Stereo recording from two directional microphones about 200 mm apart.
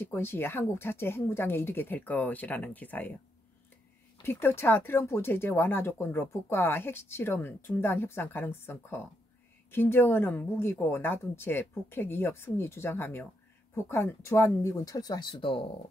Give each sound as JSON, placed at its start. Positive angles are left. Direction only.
{"t": 0.1, "sound": "speech", "side_deg": 10}
{"t": 4.2, "sound": "speech", "side_deg": 10}